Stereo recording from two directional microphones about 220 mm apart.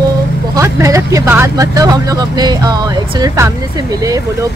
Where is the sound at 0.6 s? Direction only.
15° right (ahead or behind).